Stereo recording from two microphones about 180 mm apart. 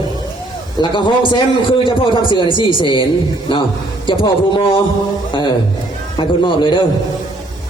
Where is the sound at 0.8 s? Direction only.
25° left (ahead or behind).